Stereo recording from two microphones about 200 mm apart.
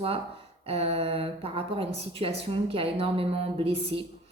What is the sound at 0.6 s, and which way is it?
A woman's voice, 30° right (ahead or behind).